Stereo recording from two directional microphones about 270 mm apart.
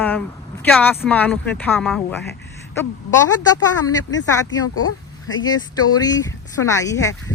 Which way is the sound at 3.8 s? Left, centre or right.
Left.